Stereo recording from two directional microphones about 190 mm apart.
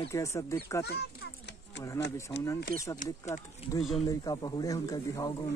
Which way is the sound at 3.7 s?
15° left (ahead or behind).